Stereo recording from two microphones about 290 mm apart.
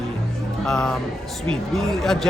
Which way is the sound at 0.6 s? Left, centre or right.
Centre.